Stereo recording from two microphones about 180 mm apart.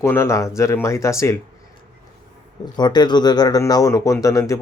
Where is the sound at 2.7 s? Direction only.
25° left (ahead or behind).